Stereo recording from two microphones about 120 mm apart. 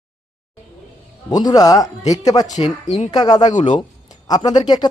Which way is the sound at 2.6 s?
55° left (ahead or behind).